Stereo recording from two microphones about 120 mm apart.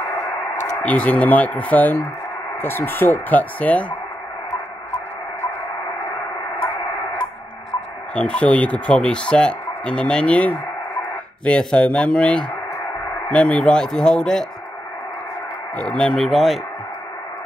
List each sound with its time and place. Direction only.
0.8 s speech: 10° left (ahead or behind)
8.1 s speech: 10° left (ahead or behind)
15.7 s speech: 10° left (ahead or behind)